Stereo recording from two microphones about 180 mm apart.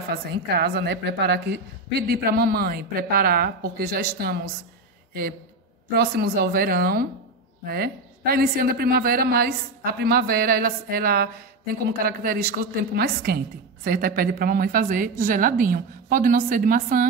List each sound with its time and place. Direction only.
0.1 s a woman's voice: 60° right (ahead or behind)
5.9 s a woman's voice: 65° right (ahead or behind)